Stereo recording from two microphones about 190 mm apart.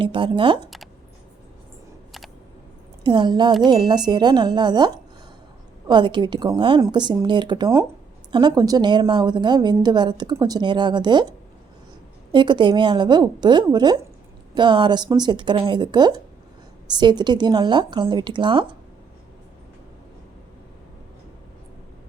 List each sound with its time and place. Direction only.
0.0 s a woman's voice: 25° right (ahead or behind)
3.0 s a woman's voice: 25° right (ahead or behind)
5.9 s a woman's voice: 25° right (ahead or behind)
12.3 s a woman's voice: 25° right (ahead or behind)